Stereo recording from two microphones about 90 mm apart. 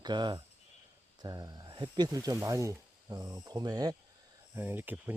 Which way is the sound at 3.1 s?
45° right (ahead or behind).